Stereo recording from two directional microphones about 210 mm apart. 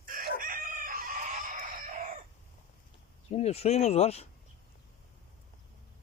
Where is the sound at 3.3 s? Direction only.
30° left (ahead or behind).